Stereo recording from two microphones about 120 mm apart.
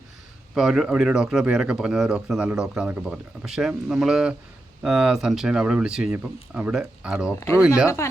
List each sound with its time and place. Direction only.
0.5 s speech: 5° right (ahead or behind)
7.3 s speech: 25° left (ahead or behind)